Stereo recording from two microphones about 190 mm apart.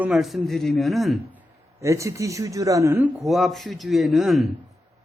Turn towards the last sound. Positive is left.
turn(degrees=0)  # may be behind; listen again after turning